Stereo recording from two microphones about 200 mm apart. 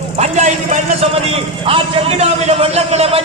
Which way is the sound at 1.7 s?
30° right (ahead or behind).